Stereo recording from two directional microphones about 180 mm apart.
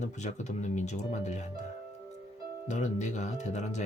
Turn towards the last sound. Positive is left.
turn(degrees=40)  # may be behind; listen again after turning